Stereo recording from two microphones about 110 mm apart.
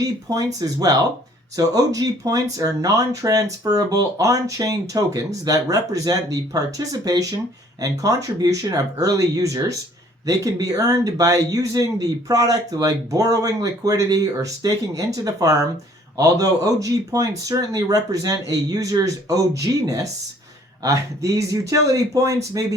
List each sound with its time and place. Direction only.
0.0 s speech: 35° right (ahead or behind)